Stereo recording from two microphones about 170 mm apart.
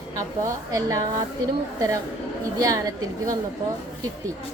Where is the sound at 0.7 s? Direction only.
20° right (ahead or behind).